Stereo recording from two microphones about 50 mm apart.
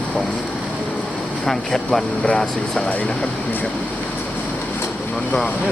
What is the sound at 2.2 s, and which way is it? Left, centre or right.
Speech, left.